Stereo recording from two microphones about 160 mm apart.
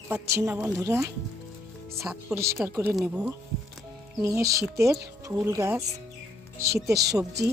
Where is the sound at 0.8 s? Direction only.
20° right (ahead or behind).